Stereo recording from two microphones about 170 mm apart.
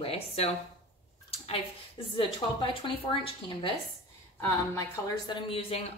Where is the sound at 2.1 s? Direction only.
30° left (ahead or behind).